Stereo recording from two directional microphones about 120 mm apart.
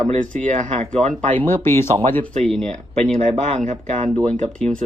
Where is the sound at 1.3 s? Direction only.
15° left (ahead or behind).